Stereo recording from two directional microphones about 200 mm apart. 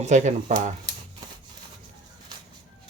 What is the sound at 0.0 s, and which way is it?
Speech, 35° right (ahead or behind).